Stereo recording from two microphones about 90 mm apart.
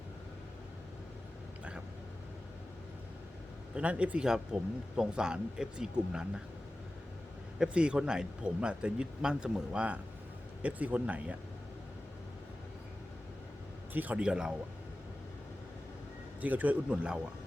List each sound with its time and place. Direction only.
3.8 s speech: 15° right (ahead or behind)
7.6 s speech: 10° right (ahead or behind)
13.9 s speech: 20° right (ahead or behind)
16.4 s speech: 20° right (ahead or behind)